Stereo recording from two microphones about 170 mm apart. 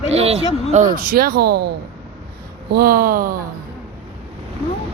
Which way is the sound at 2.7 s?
60° right (ahead or behind).